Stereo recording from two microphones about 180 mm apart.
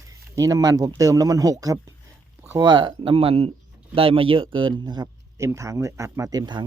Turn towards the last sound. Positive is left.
turn(degrees=-20)  # may be behind; listen again after turning